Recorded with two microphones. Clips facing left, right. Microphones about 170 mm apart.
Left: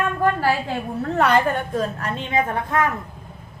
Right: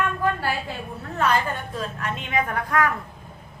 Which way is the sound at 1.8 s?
35° left (ahead or behind).